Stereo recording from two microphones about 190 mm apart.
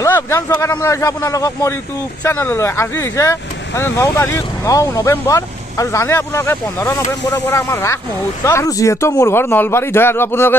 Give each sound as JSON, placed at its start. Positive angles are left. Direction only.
{"t": 0.0, "sound": "speech", "side_deg": 15}